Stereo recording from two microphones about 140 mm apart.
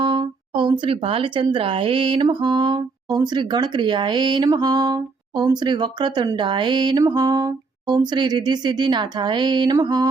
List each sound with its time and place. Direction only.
0.0 s speech: 35° right (ahead or behind)